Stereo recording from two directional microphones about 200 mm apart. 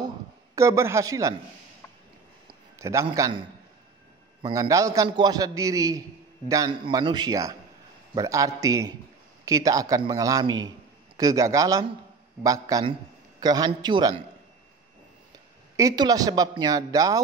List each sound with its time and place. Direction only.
0.6 s a man's voice: 15° right (ahead or behind)
2.8 s a man's voice: 15° right (ahead or behind)
15.3 s a man's voice: 15° right (ahead or behind)